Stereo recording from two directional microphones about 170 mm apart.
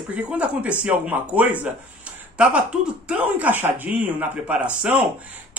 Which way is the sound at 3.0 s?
10° right (ahead or behind).